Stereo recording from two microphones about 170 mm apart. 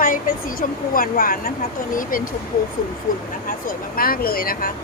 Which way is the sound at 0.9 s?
60° left (ahead or behind).